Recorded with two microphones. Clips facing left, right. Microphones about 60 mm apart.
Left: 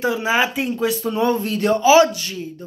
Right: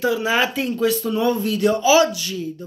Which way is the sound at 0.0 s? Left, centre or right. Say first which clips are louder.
Even; left.